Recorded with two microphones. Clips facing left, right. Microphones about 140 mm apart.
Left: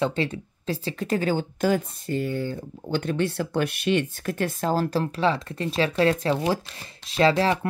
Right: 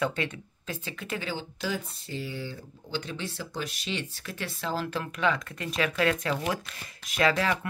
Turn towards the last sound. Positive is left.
turn(degrees=30)  # may be behind; listen again after turning